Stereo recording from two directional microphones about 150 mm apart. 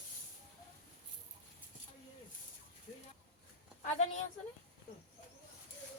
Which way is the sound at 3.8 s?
50° left (ahead or behind).